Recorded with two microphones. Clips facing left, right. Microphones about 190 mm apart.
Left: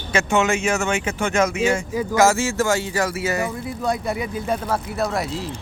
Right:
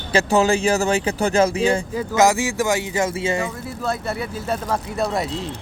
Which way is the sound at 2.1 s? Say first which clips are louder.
Even; 15° right (ahead or behind).